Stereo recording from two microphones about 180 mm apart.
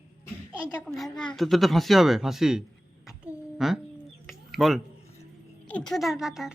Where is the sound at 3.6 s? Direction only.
Centre (ahead or behind).